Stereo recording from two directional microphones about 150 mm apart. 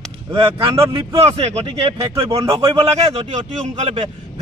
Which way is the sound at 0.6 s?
40° right (ahead or behind).